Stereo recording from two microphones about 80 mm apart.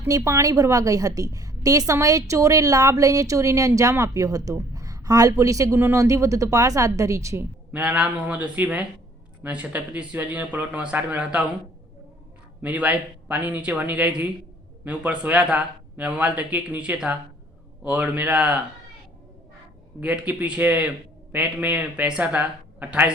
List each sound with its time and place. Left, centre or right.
0.2 s a woman's voice: right
7.7 s speech: centre
12.6 s speech: centre
20.0 s speech: centre